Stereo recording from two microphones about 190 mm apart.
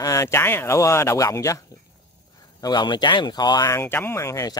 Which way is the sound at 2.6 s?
25° left (ahead or behind).